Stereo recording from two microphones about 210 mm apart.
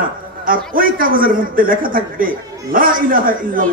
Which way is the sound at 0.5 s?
40° right (ahead or behind).